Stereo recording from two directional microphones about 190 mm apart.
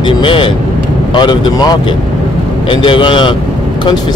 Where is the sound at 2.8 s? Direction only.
25° left (ahead or behind).